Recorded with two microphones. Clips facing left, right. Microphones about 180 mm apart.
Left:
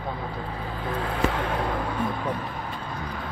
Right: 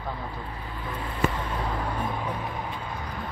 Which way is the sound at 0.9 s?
90° left.